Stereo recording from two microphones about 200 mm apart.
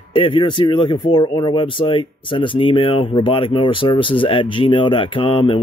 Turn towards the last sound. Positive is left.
turn(degrees=25)  # may be behind; listen again after turning